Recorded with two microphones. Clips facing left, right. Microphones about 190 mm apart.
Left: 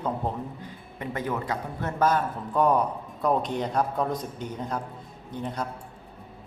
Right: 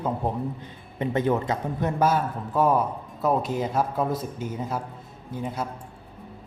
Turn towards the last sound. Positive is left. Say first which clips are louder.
# right 1 dB
turn(degrees=-5)  # may be behind; listen again after turning